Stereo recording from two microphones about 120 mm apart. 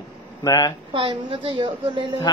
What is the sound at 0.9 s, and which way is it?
A woman's voice, 45° right (ahead or behind).